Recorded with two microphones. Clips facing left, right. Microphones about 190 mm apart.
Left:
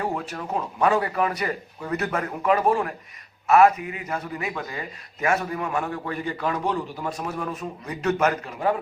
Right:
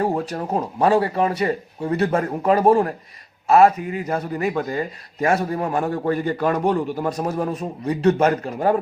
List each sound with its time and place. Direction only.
0.0 s a man's voice: 35° right (ahead or behind)